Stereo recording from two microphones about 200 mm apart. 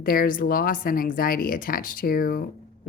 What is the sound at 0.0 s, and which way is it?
Speech, 45° left (ahead or behind).